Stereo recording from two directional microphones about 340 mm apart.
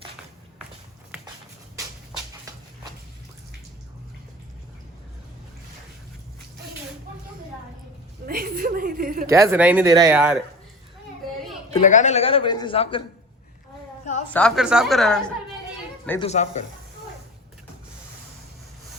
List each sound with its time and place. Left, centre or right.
8.3 s a sound: right
9.3 s speech: centre
11.7 s a man's voice: left
14.3 s speech: centre
16.2 s speech: centre